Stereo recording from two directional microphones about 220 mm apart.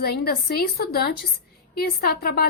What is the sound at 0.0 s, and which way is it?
A woman's voice, 45° left (ahead or behind).